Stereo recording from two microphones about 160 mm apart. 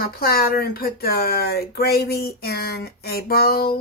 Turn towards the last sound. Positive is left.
turn(degrees=70)  # may be behind; listen again after turning